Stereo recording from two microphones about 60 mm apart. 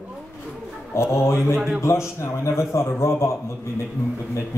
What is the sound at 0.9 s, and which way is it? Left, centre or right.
A woman's voice, left.